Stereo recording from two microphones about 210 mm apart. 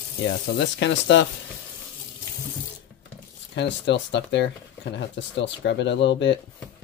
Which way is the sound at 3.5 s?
55° left (ahead or behind).